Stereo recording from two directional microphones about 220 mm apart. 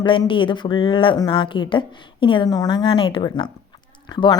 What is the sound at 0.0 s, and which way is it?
A woman's voice, 20° left (ahead or behind).